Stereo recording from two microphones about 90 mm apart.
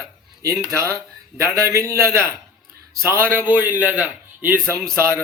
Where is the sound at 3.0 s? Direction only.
30° right (ahead or behind).